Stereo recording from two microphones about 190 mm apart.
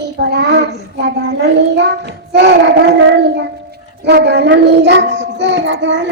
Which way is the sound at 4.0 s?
60° right (ahead or behind).